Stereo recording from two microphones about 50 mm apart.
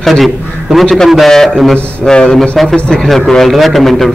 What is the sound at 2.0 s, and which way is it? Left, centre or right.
Speech, centre.